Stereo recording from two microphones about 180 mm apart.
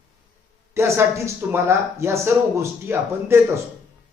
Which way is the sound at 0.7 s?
15° right (ahead or behind).